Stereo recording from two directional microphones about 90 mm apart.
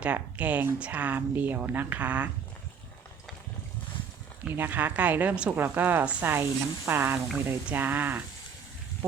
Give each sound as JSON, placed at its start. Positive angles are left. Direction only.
{"t": 0.0, "sound": "speech", "side_deg": -15}
{"t": 4.4, "sound": "speech", "side_deg": -20}
{"t": 6.2, "sound": "speech", "side_deg": -25}